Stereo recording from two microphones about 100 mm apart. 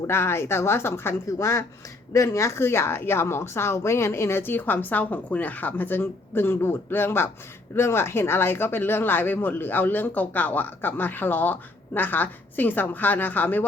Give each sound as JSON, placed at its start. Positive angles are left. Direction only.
{"t": 0.1, "sound": "speech", "side_deg": 25}